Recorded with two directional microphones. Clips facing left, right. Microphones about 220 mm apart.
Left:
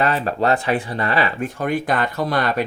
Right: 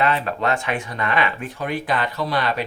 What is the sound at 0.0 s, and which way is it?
Speech, 40° left (ahead or behind).